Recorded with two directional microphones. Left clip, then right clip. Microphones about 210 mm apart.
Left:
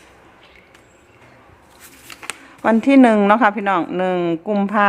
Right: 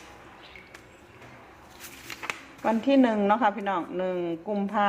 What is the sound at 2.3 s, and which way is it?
Speech, 35° left (ahead or behind).